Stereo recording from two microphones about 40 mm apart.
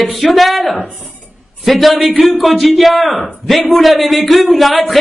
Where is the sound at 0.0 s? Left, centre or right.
Centre.